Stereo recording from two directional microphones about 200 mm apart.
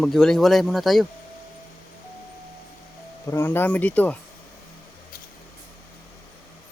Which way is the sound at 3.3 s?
10° left (ahead or behind).